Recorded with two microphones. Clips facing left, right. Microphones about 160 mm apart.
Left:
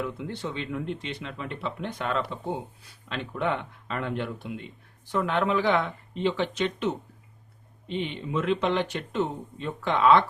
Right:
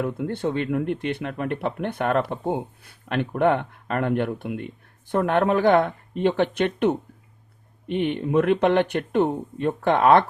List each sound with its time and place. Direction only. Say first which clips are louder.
0.0 s speech: right 7 dB; 50° right (ahead or behind)